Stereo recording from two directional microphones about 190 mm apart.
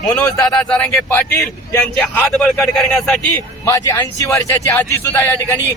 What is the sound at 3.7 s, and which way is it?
A man's voice, 20° left (ahead or behind).